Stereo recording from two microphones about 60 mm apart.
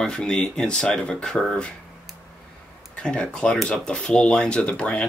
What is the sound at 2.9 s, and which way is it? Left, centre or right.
Speech, centre.